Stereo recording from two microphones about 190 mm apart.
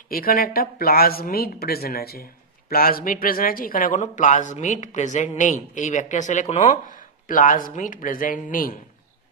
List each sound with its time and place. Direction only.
0.1 s a woman's voice: 50° left (ahead or behind)